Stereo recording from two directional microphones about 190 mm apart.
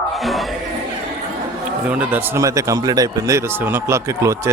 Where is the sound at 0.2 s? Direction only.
Centre (ahead or behind).